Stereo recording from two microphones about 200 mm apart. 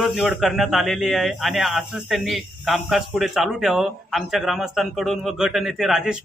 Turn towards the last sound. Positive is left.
turn(degrees=0)  # may be behind; listen again after turning